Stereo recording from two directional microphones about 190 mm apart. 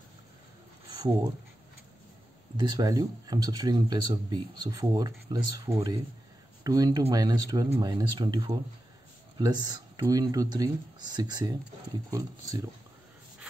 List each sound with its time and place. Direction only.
0.9 s speech: 20° right (ahead or behind)
2.5 s speech: 20° right (ahead or behind)